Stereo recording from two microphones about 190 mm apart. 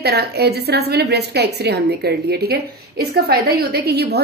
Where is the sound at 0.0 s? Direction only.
55° right (ahead or behind).